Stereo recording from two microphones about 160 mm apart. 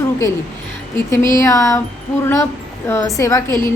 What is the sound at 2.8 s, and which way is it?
Speech, 20° left (ahead or behind).